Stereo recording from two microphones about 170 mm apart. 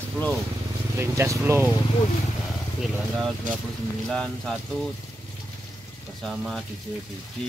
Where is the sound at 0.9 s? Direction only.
15° right (ahead or behind).